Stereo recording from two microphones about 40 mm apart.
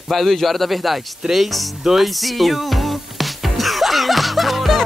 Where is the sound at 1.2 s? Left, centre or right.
Centre.